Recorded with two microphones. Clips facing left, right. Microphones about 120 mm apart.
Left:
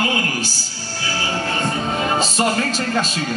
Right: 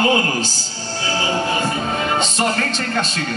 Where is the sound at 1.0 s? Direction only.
20° right (ahead or behind).